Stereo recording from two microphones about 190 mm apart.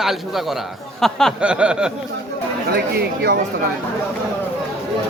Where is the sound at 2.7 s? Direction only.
55° right (ahead or behind).